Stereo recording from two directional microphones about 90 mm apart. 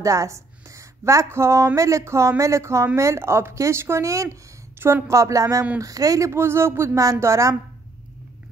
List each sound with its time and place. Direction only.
0.0 s speech: 35° right (ahead or behind)